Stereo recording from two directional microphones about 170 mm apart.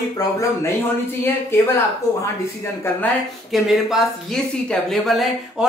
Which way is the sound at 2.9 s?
15° left (ahead or behind).